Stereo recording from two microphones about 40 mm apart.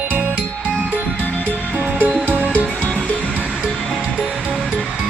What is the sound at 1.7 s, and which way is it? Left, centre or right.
Music, right.